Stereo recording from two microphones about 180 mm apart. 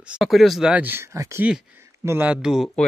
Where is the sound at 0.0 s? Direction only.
5° right (ahead or behind).